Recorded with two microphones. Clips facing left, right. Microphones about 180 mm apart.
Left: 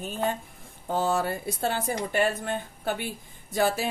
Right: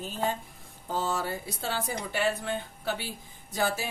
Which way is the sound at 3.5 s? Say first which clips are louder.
Left 4 dB; 60° left (ahead or behind).